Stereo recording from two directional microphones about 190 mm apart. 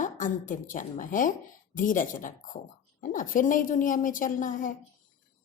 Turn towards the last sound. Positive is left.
turn(degrees=45)  # may be behind; listen again after turning